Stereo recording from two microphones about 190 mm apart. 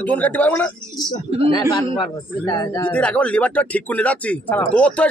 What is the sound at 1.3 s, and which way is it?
Speech, 30° right (ahead or behind).